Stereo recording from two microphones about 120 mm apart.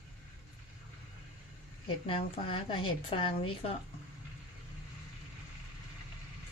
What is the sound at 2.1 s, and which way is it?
A woman's voice, 45° left (ahead or behind).